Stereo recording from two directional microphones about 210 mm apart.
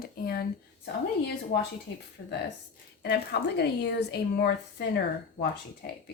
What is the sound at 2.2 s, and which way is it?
A woman's voice, 50° left (ahead or behind).